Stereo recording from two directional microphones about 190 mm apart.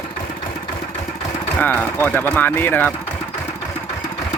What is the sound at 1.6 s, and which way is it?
Speech, 10° left (ahead or behind).